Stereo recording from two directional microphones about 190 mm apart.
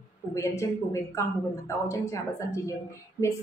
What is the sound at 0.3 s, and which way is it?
A woman's voice, 15° left (ahead or behind).